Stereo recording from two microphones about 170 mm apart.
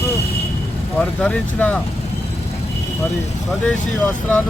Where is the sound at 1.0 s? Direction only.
5° left (ahead or behind).